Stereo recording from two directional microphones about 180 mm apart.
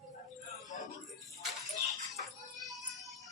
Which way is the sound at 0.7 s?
45° left (ahead or behind).